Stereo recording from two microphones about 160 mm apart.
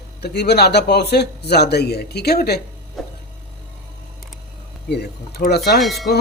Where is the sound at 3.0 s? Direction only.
Centre (ahead or behind).